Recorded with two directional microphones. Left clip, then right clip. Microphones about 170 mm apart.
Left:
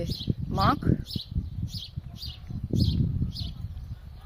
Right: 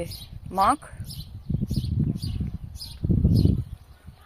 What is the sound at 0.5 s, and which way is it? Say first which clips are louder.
Speech: right 5 dB; 20° left (ahead or behind).